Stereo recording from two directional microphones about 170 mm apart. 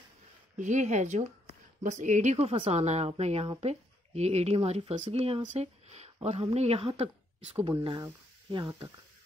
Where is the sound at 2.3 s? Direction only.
35° right (ahead or behind).